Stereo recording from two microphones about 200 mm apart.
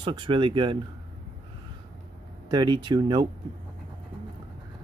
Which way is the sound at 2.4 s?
20° right (ahead or behind).